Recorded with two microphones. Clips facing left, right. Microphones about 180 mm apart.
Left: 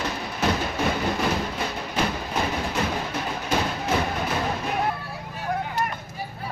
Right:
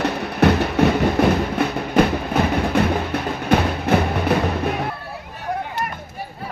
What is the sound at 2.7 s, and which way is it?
Music, 60° right (ahead or behind).